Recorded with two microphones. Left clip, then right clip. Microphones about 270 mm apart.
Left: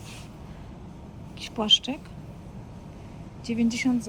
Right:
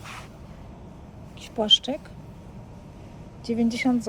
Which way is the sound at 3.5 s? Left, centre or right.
Right.